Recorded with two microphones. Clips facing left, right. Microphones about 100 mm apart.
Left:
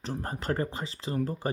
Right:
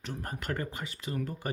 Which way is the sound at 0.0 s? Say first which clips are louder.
Left 4 dB; 30° left (ahead or behind).